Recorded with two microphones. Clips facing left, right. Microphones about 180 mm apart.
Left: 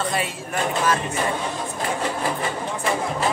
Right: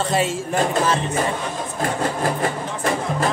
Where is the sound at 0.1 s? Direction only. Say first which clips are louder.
Right 6 dB; 25° right (ahead or behind).